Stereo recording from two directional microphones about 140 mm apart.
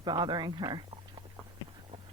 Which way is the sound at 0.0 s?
30° right (ahead or behind).